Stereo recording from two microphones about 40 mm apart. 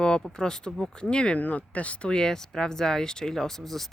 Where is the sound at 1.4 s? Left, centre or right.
Left.